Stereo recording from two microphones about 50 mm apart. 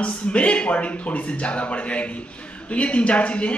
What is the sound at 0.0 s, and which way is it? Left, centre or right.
Speech, left.